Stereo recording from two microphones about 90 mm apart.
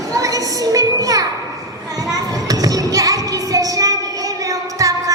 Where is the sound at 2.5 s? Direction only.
45° right (ahead or behind).